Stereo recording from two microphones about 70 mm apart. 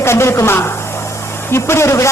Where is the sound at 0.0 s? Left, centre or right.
Left.